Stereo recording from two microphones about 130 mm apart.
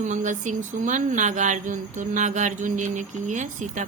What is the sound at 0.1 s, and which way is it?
Speech, 70° right (ahead or behind).